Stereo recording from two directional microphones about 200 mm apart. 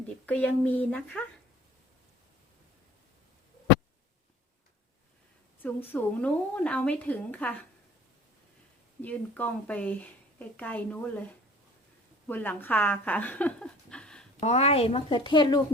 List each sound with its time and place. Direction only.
0.3 s a woman's voice: 10° left (ahead or behind)
5.6 s a woman's voice: 10° left (ahead or behind)
9.0 s a woman's voice: 10° left (ahead or behind)
12.3 s speech: 10° left (ahead or behind)
14.4 s a woman's voice: 30° left (ahead or behind)